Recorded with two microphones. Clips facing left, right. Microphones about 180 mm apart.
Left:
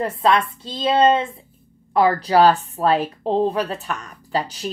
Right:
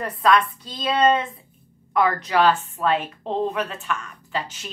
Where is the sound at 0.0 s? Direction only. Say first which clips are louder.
Left 1 dB; 25° left (ahead or behind).